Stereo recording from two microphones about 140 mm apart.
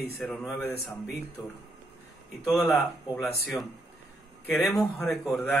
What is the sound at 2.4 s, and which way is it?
Speech, centre (ahead or behind).